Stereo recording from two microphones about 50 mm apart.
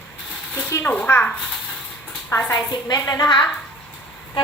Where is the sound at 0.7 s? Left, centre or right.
Left.